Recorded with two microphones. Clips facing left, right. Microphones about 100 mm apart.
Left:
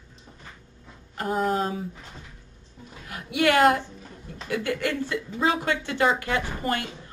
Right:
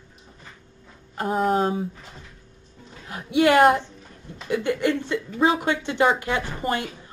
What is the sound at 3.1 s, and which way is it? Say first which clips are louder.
Speech: right 4 dB; 25° right (ahead or behind).